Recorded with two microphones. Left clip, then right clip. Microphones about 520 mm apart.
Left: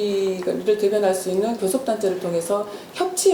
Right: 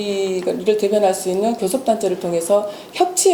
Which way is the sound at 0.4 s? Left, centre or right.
Right.